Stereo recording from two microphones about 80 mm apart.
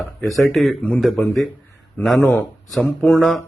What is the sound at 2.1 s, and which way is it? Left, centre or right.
Speech, left.